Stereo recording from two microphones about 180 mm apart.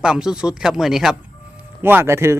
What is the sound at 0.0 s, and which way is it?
Speech, 5° right (ahead or behind).